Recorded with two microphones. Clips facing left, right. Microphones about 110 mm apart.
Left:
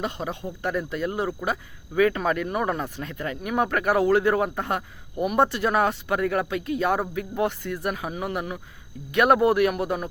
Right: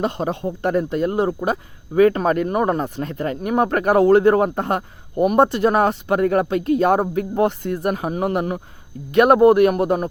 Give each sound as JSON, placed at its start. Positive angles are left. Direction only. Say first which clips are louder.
{"t": 0.0, "sound": "speech", "louder": "right 8 dB", "side_deg": -40}
{"t": 5.4, "sound": "speech", "louder": "right 4 dB", "side_deg": -25}